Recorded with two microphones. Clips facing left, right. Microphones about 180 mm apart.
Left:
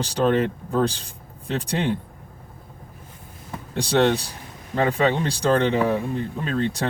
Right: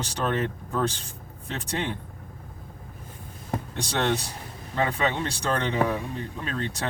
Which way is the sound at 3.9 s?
30° left (ahead or behind).